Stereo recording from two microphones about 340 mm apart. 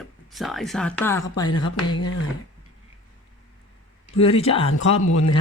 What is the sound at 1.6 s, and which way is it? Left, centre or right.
Speech, left.